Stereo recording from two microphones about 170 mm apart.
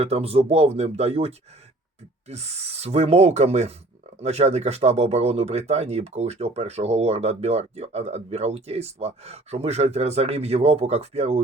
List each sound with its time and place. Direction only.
0.0 s speech: 35° right (ahead or behind)